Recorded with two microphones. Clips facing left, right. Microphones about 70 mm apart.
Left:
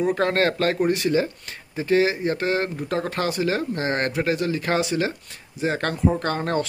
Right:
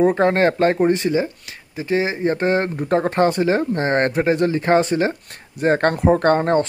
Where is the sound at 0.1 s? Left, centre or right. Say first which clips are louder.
Right 5 dB; right.